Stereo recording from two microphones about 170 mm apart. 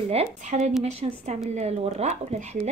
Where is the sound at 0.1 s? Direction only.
40° right (ahead or behind).